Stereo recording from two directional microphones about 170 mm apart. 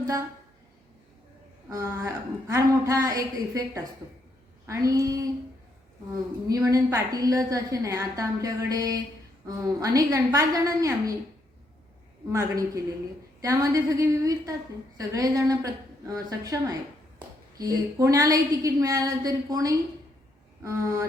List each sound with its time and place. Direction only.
1.7 s a woman's voice: 20° right (ahead or behind)
6.5 s a woman's voice: 20° right (ahead or behind)
12.3 s a woman's voice: 20° right (ahead or behind)